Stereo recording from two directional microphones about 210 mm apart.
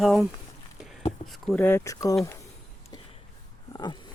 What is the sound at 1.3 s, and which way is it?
Speech, centre (ahead or behind).